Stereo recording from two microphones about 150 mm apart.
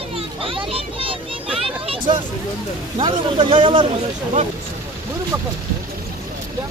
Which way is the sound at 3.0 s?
35° right (ahead or behind).